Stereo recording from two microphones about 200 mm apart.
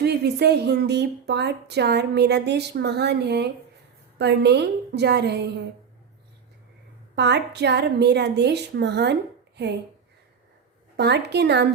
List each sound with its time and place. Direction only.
0.0 s a woman's voice: 55° right (ahead or behind)
7.2 s a woman's voice: 55° right (ahead or behind)
10.9 s a woman's voice: 55° right (ahead or behind)